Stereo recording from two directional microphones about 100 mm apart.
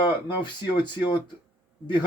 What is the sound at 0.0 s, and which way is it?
Speech, 50° left (ahead or behind).